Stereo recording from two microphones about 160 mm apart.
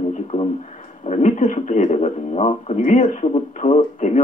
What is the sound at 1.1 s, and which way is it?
Speech, 45° left (ahead or behind).